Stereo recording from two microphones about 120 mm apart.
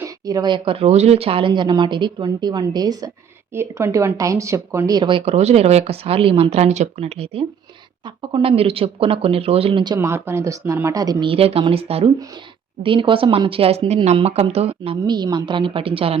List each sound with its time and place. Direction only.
0.0 s speech: 30° right (ahead or behind)
3.5 s speech: 20° right (ahead or behind); by 5.2 s 40° right (ahead or behind)
5.2 s speech: 60° right (ahead or behind)
8.0 s speech: 45° right (ahead or behind)
9.8 s speech: 30° right (ahead or behind)
11.3 s speech: 55° right (ahead or behind)
14.2 s speech: 55° right (ahead or behind)
15.0 s speech: 35° right (ahead or behind)